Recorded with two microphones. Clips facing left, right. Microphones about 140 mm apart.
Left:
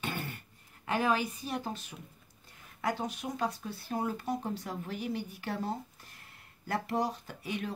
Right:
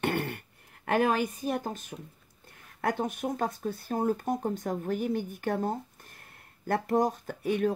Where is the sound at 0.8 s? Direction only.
50° right (ahead or behind).